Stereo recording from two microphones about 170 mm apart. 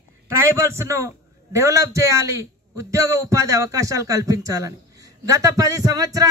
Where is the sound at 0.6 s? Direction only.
15° right (ahead or behind).